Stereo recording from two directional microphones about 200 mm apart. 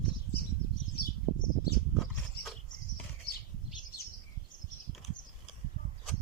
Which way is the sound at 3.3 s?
55° left (ahead or behind).